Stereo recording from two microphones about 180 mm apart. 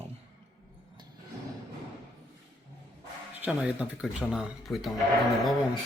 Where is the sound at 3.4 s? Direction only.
5° right (ahead or behind).